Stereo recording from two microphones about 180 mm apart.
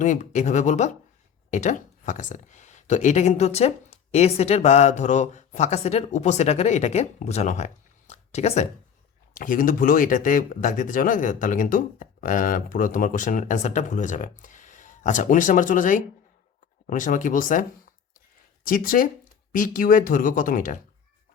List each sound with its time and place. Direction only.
0.0 s speech: 40° left (ahead or behind)
9.3 s speech: 50° left (ahead or behind)